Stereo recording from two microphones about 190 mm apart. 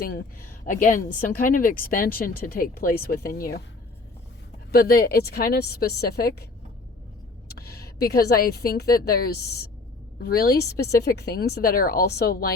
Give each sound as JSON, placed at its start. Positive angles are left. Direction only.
{"t": 0.0, "sound": "speech", "side_deg": 55}
{"t": 4.7, "sound": "speech", "side_deg": 50}
{"t": 7.4, "sound": "speech", "side_deg": 55}